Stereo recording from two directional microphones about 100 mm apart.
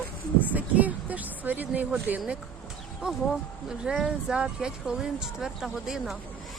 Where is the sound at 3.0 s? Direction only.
5° right (ahead or behind).